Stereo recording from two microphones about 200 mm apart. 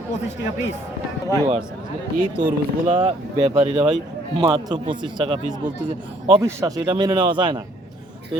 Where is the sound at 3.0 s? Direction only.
30° right (ahead or behind).